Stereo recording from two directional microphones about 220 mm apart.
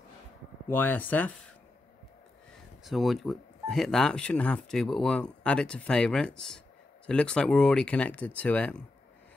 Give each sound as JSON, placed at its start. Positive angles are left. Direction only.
{"t": 0.7, "sound": "speech", "side_deg": 10}
{"t": 2.8, "sound": "speech", "side_deg": 0}